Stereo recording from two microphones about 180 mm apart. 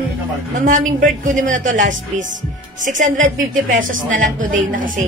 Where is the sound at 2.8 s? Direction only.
45° right (ahead or behind).